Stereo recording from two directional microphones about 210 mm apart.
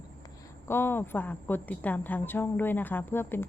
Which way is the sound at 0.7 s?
10° left (ahead or behind).